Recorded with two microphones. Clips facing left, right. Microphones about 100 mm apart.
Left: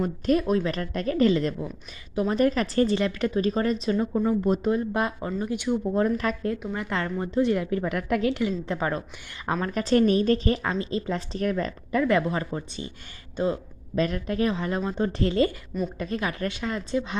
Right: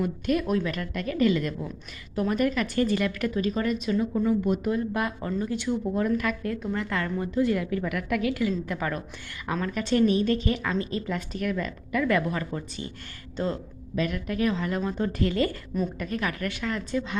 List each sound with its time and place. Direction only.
0.0 s speech: 35° left (ahead or behind); by 6.0 s 20° left (ahead or behind)
6.0 s speech: 35° left (ahead or behind)
6.6 s speech: 20° left (ahead or behind)
9.5 s a man's voice: 40° left (ahead or behind); by 13.6 s 15° left (ahead or behind)
13.9 s speech: 35° left (ahead or behind)
14.5 s speech: 20° left (ahead or behind)